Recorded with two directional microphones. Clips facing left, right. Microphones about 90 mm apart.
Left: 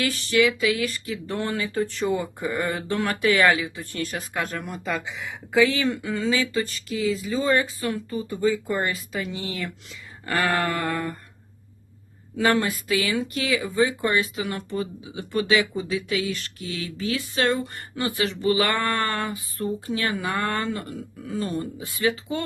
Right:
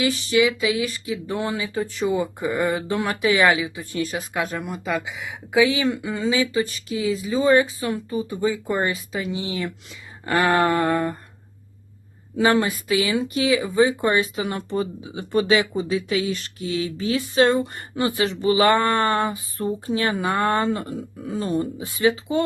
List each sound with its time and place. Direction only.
0.0 s speech: 15° right (ahead or behind)
12.4 s speech: 20° right (ahead or behind)